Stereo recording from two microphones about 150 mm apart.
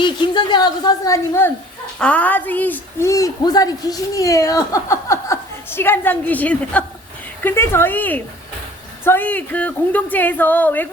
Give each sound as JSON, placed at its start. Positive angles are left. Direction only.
{"t": 0.0, "sound": "a woman's voice", "side_deg": 30}